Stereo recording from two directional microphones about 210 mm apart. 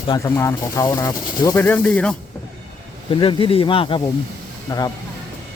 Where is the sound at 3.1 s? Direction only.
25° left (ahead or behind).